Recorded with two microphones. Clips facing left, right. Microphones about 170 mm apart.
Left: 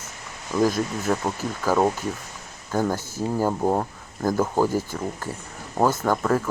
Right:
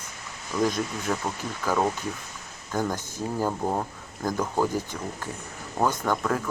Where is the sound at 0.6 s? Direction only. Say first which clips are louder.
Left 4 dB; 5° left (ahead or behind).